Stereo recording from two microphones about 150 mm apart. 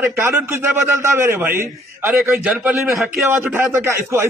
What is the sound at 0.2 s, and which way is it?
A man's voice, 15° right (ahead or behind).